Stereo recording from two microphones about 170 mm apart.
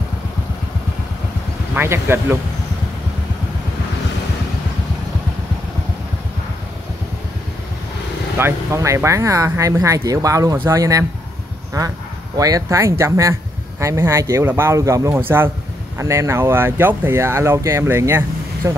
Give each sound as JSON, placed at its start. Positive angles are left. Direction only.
{"t": 1.8, "sound": "speech", "side_deg": -15}
{"t": 8.4, "sound": "speech", "side_deg": -15}